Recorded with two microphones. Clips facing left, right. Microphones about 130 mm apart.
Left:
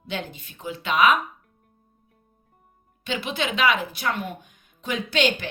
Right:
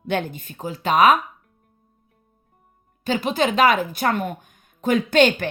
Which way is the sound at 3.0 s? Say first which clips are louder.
Right 7 dB; 40° right (ahead or behind).